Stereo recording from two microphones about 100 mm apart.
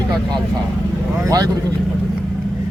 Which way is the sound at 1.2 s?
40° right (ahead or behind).